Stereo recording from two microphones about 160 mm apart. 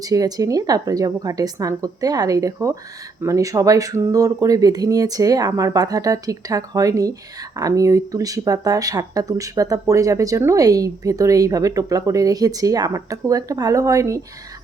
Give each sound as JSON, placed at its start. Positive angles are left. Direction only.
{"t": 0.0, "sound": "speech", "side_deg": -20}